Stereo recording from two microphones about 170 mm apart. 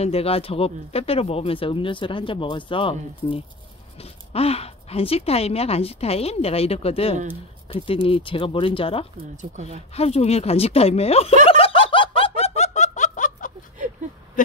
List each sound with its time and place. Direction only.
0.0 s speech: 35° left (ahead or behind)
9.4 s speech: 40° right (ahead or behind)
9.9 s speech: 40° left (ahead or behind)
11.4 s snicker: 35° left (ahead or behind)